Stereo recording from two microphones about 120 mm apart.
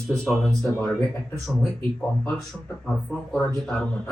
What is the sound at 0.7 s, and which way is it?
Speech, 10° left (ahead or behind).